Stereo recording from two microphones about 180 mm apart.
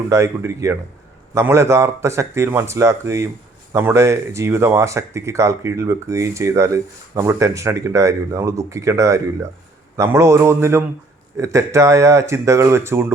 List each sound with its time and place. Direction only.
0.1 s speech: 15° right (ahead or behind)